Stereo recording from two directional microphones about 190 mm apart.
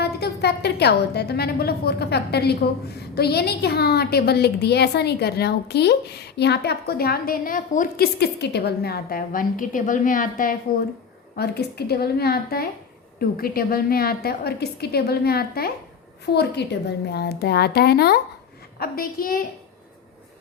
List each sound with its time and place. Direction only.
0.0 s a woman's voice: 60° left (ahead or behind)
11.3 s a woman's voice: 55° left (ahead or behind)